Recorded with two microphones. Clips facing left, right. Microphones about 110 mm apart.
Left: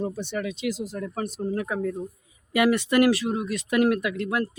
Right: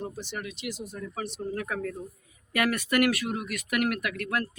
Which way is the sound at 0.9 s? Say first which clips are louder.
Left 5 dB; 50° left (ahead or behind).